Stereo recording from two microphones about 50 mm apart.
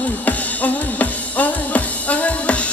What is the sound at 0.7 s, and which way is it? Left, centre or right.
Music, left.